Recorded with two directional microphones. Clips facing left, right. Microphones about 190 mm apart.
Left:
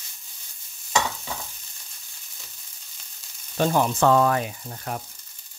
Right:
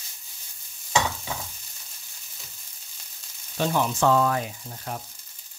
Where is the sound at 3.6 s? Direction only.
45° left (ahead or behind); by 5.0 s 65° left (ahead or behind).